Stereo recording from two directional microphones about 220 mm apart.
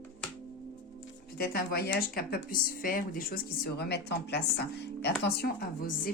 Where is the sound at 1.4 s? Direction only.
45° left (ahead or behind).